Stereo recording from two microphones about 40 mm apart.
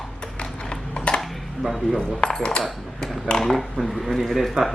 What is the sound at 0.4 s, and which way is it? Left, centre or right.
Clip-clop, centre.